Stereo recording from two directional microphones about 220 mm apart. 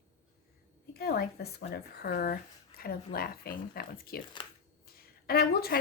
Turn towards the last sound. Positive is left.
turn(degrees=45)  # may be behind; listen again after turning